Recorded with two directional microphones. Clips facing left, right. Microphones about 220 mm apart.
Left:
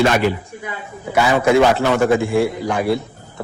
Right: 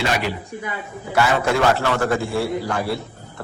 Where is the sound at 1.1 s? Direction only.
20° left (ahead or behind).